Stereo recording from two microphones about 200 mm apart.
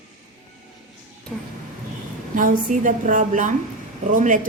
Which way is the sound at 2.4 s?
40° right (ahead or behind).